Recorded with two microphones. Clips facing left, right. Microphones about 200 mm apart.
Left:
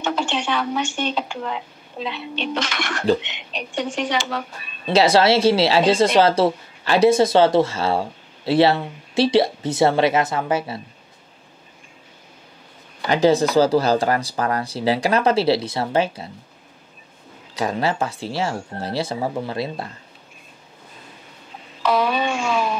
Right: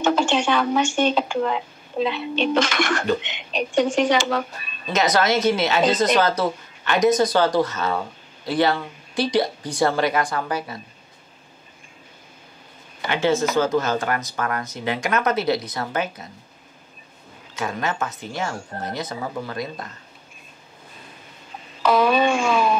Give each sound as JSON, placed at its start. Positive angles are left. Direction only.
{"t": 0.0, "sound": "speech", "side_deg": -45}
{"t": 4.9, "sound": "a woman's voice", "side_deg": 30}
{"t": 13.1, "sound": "speech", "side_deg": 35}
{"t": 17.6, "sound": "speech", "side_deg": 35}
{"t": 21.8, "sound": "speech", "side_deg": -45}